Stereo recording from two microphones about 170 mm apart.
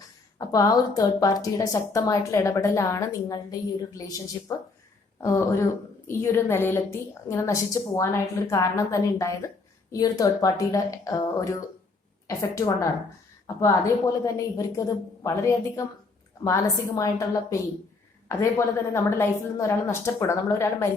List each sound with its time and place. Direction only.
0.3 s a woman's voice: 20° left (ahead or behind)